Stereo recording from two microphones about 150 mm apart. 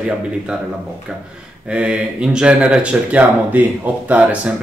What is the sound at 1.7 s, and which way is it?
Speech, 5° right (ahead or behind).